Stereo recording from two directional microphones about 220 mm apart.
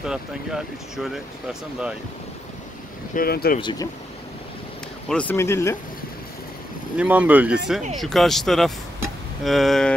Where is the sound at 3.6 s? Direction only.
20° left (ahead or behind).